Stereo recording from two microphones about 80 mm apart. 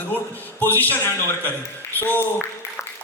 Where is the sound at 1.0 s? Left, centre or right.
Left.